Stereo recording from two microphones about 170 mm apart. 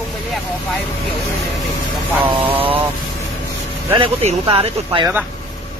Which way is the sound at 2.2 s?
30° right (ahead or behind).